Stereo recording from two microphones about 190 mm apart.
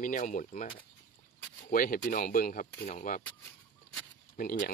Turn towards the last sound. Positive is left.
turn(degrees=50)  # may be behind; listen again after turning